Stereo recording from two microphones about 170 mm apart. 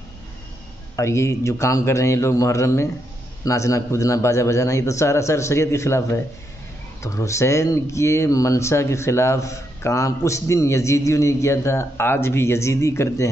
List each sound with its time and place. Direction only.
0.9 s speech: 15° left (ahead or behind)